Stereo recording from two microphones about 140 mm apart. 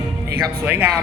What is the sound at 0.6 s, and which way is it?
Speech, 15° right (ahead or behind).